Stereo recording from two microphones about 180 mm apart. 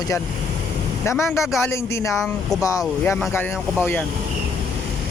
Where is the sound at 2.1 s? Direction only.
Centre (ahead or behind).